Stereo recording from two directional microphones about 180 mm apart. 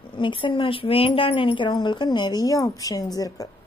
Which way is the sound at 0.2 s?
30° left (ahead or behind).